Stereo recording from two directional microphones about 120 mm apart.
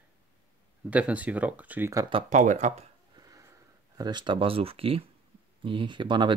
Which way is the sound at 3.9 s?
35° right (ahead or behind).